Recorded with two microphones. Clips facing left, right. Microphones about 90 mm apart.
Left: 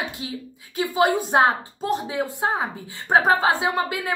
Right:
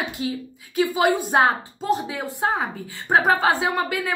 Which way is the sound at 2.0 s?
20° left (ahead or behind).